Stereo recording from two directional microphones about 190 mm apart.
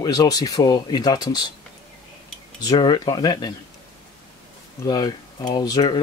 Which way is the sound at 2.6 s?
20° left (ahead or behind).